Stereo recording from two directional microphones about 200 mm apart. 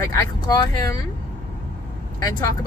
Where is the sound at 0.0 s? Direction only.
15° left (ahead or behind).